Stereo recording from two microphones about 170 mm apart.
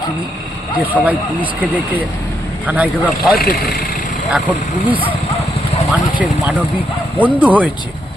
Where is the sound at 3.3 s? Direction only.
65° left (ahead or behind).